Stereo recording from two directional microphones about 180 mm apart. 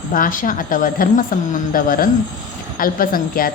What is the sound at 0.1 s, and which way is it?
A woman's voice, 50° left (ahead or behind).